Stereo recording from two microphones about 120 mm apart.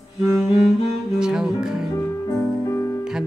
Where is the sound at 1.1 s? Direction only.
5° right (ahead or behind).